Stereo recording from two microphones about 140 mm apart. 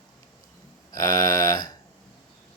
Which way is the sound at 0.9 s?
30° left (ahead or behind).